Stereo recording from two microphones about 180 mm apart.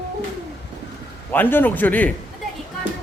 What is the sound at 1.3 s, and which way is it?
Speech, 10° left (ahead or behind).